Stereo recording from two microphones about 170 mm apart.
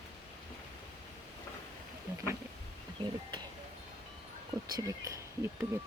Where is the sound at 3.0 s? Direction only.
25° right (ahead or behind).